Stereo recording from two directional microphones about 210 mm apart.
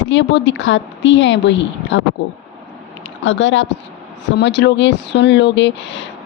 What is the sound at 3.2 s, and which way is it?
Speech, 65° left (ahead or behind).